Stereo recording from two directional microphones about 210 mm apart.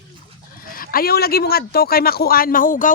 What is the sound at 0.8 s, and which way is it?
A man's voice, 45° left (ahead or behind).